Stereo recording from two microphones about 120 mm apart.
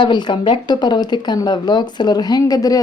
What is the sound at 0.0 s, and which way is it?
Speech, 40° left (ahead or behind).